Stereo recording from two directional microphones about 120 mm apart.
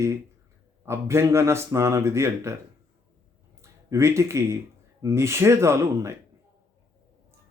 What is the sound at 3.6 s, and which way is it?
Speech, 25° right (ahead or behind).